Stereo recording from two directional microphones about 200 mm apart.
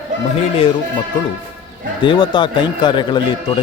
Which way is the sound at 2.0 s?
25° left (ahead or behind).